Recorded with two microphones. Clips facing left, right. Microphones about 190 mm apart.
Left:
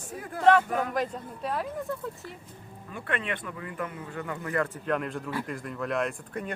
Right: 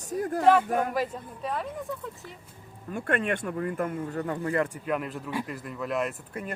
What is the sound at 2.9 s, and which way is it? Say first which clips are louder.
Speech: right 5 dB; 45° right (ahead or behind).